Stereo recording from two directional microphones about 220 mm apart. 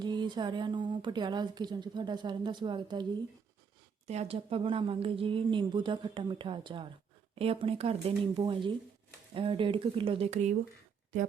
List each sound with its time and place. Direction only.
0.0 s speech: 20° right (ahead or behind)